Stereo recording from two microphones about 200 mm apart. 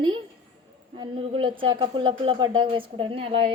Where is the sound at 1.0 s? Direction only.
25° right (ahead or behind).